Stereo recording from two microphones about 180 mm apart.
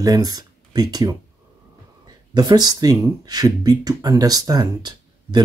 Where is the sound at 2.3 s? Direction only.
25° right (ahead or behind).